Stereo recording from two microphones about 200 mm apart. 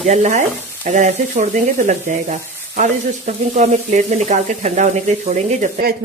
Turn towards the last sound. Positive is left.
turn(degrees=-50)  # may be behind; listen again after turning